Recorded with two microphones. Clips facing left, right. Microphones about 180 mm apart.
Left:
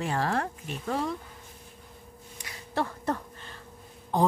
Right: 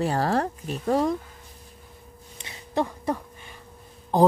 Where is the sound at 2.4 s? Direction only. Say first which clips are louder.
Right 4 dB; 20° right (ahead or behind).